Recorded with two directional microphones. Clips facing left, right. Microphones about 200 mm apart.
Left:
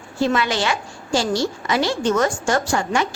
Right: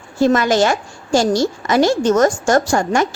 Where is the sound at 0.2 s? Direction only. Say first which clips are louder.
Right 6 dB; 45° right (ahead or behind).